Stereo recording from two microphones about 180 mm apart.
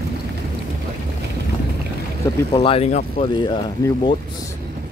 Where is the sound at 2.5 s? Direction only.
30° left (ahead or behind).